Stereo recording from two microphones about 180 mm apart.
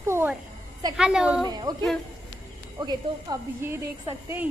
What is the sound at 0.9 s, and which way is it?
Speech, 5° right (ahead or behind).